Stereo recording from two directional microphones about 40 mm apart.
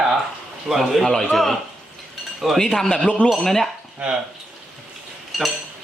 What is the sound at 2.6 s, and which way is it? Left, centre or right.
A man's voice, centre.